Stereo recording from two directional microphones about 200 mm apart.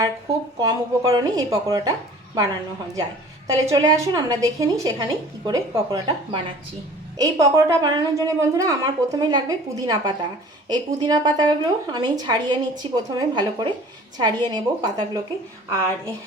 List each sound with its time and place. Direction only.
0.6 s a woman's voice: 15° right (ahead or behind)